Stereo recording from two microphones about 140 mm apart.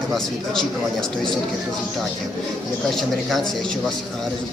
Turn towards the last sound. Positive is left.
turn(degrees=0)  # may be behind; listen again after turning